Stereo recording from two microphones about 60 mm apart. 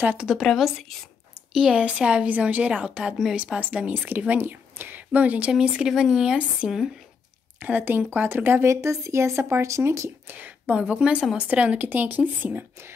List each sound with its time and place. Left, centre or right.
0.4 s a woman's voice: centre
1.5 s a woman's voice: centre
4.3 s speech: right
5.5 s speech: centre
7.6 s speech: right
8.6 s speech: right
10.2 s a sound: right
10.8 s a woman's voice: centre; by 12.9 s right